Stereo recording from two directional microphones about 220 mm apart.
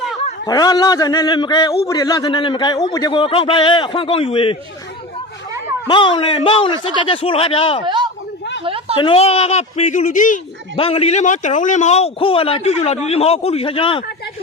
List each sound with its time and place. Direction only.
0.4 s a man's voice: 15° left (ahead or behind)
5.9 s a man's voice: 20° left (ahead or behind)
7.9 s a sound: 20° right (ahead or behind)
9.0 s a man's voice: 25° left (ahead or behind)
10.8 s a man's voice: 25° left (ahead or behind)